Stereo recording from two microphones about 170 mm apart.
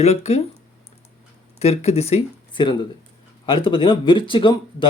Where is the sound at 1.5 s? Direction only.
40° left (ahead or behind).